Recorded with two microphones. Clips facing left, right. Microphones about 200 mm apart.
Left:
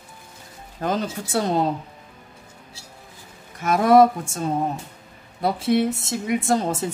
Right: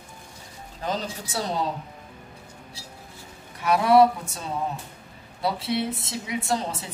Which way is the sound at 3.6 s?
45° left (ahead or behind).